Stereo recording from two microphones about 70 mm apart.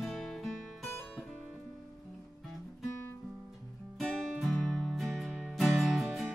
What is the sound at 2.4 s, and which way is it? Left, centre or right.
Music, centre.